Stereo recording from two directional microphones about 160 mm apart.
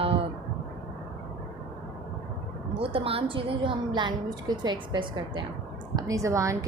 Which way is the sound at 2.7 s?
35° right (ahead or behind).